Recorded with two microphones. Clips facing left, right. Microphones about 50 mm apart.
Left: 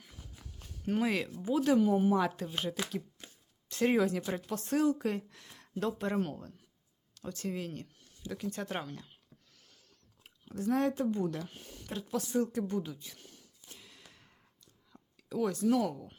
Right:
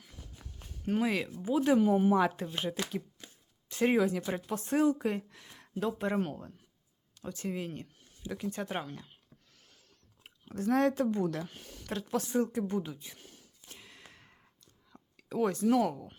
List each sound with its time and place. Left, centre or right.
0.0 s a sound: centre
0.9 s speech: centre
1.6 s speech: right
3.7 s speech: centre
4.4 s speech: centre
9.6 s a sound: right
10.2 s chewing: right
10.7 s a woman's voice: right
12.2 s speech: right
13.7 s sigh: right
14.9 s a sound: right